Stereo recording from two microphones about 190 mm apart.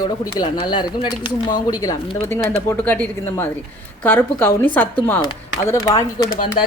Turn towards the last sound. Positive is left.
turn(degrees=20)  # may be behind; listen again after turning